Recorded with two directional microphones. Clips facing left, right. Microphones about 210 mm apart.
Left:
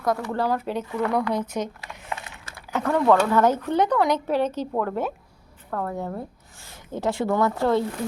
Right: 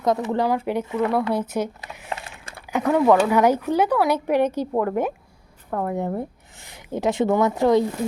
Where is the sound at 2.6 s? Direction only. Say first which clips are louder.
Right 3 dB; 15° right (ahead or behind).